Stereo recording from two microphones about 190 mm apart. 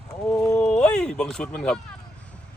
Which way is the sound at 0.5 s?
5° left (ahead or behind).